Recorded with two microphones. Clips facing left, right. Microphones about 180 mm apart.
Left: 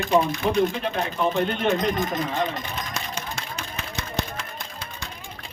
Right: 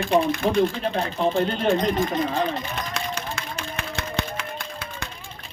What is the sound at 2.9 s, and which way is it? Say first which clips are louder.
Run: right 3 dB; 55° right (ahead or behind).